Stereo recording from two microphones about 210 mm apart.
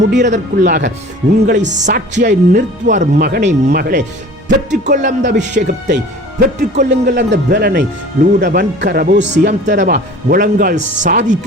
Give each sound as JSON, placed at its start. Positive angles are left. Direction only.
{"t": 0.2, "sound": "music", "side_deg": -35}
{"t": 0.6, "sound": "speech", "side_deg": -55}
{"t": 1.6, "sound": "music", "side_deg": -35}
{"t": 2.1, "sound": "speech", "side_deg": -50}
{"t": 2.8, "sound": "music", "side_deg": -35}
{"t": 3.2, "sound": "speech", "side_deg": -50}
{"t": 4.4, "sound": "music", "side_deg": -35}
{"t": 5.5, "sound": "speech", "side_deg": -55}
{"t": 6.4, "sound": "speech", "side_deg": -40}
{"t": 9.8, "sound": "speech", "side_deg": -45}